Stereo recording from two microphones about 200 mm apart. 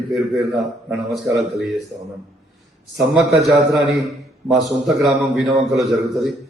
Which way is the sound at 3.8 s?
60° right (ahead or behind).